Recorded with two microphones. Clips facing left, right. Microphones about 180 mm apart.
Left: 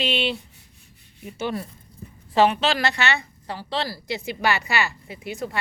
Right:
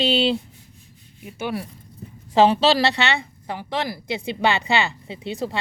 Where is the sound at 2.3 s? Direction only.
30° right (ahead or behind).